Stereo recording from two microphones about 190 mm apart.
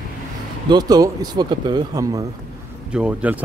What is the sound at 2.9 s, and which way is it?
Speech, 5° right (ahead or behind).